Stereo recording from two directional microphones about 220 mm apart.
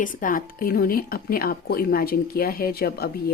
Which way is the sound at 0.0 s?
40° left (ahead or behind).